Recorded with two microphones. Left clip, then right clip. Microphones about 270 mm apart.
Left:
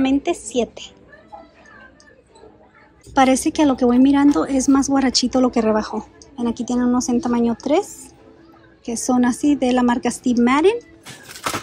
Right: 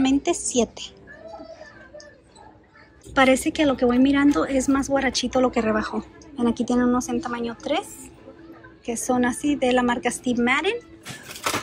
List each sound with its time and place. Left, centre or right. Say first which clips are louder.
0.0 s a woman's voice: left 2 dB; centre
3.2 s a woman's voice: left 3 dB; centre